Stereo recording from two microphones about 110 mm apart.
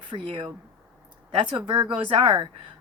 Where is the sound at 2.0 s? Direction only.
50° right (ahead or behind).